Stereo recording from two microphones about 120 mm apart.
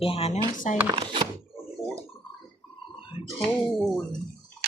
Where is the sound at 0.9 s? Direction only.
45° right (ahead or behind).